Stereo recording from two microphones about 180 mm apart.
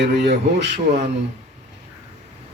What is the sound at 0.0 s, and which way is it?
Speech, 70° right (ahead or behind).